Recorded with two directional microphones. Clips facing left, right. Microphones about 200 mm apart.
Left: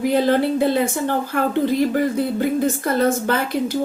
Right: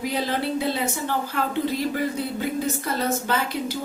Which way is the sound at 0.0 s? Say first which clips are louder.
Left 9 dB; 55° left (ahead or behind).